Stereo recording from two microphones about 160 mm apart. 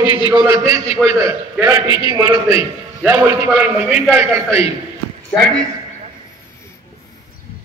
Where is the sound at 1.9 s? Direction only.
30° left (ahead or behind).